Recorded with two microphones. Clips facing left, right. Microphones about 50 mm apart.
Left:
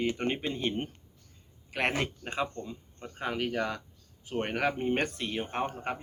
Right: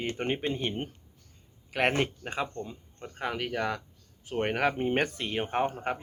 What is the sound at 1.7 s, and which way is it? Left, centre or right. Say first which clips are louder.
Speech: right 3 dB; centre.